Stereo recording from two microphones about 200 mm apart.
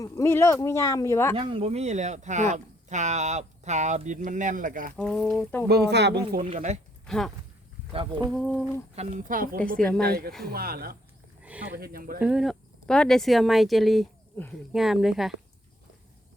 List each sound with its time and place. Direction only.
0.0 s speech: 15° left (ahead or behind)
1.4 s speech: 25° right (ahead or behind); by 4.9 s 40° right (ahead or behind)
4.9 s speech: 5° left (ahead or behind)
5.6 s speech: 55° right (ahead or behind)
6.4 s speech: 30° right (ahead or behind)
7.1 s speech: centre (ahead or behind)
7.9 s speech: 25° right (ahead or behind)
8.3 s speech: centre (ahead or behind)
9.0 s speech: 40° right (ahead or behind)
9.7 s speech: 5° left (ahead or behind)
10.0 s speech: 50° right (ahead or behind)
11.4 s a sound: 5° right (ahead or behind)
11.7 s speech: 50° right (ahead or behind)
12.2 s speech: 5° right (ahead or behind)